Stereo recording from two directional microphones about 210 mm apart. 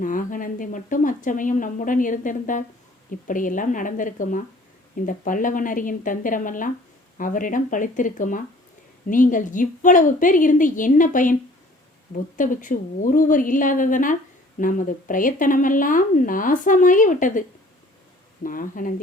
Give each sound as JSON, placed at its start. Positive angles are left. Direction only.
{"t": 0.0, "sound": "speech", "side_deg": 40}
{"t": 18.4, "sound": "speech", "side_deg": 40}